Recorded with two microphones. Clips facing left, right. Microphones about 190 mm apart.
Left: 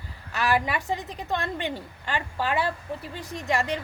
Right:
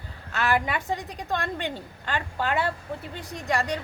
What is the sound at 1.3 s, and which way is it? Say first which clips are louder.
A woman's voice: even; 10° left (ahead or behind).